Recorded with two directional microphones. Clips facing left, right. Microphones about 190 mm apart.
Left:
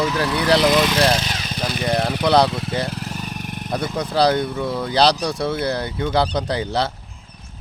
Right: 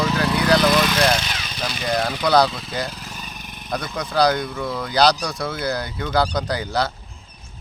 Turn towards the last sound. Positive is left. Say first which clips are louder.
# left 1 dB
turn(degrees=25)  # may be behind; listen again after turning